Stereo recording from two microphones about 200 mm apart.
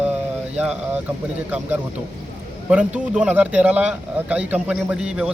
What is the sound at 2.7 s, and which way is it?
A man's voice, 5° right (ahead or behind).